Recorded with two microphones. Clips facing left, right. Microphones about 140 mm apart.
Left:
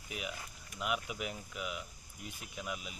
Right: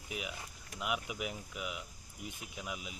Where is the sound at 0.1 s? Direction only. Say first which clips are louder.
Even; 15° right (ahead or behind).